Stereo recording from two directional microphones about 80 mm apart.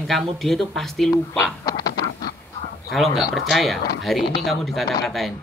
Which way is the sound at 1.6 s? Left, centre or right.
Left.